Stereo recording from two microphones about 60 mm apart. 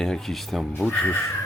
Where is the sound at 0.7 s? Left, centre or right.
Left.